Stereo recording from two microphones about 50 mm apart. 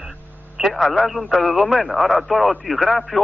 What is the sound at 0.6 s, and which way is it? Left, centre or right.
Speech, centre.